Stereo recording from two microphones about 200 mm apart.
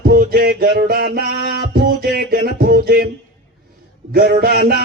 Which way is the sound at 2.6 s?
50° right (ahead or behind).